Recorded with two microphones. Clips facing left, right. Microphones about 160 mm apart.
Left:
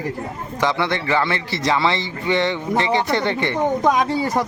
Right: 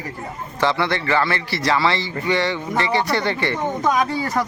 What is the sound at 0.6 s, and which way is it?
A man's voice, 15° left (ahead or behind).